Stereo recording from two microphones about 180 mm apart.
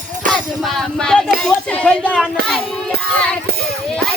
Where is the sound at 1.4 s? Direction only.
5° left (ahead or behind).